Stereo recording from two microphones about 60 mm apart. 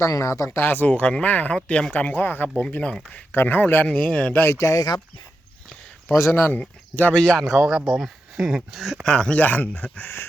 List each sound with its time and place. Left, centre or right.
0.1 s speech: left
0.5 s speech: left
3.3 s speech: left
3.8 s speech: centre
4.5 s speech: left
6.1 s speech: left
6.5 s speech: left
7.1 s speech: centre
7.6 s speech: centre
9.0 s speech: centre
9.3 s speech: left